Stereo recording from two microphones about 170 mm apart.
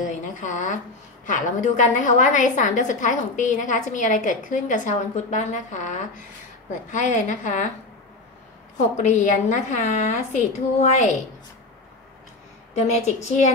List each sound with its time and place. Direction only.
0.0 s a sound: 45° left (ahead or behind)
1.2 s a woman's voice: 45° left (ahead or behind)
8.7 s a woman's voice: 45° left (ahead or behind)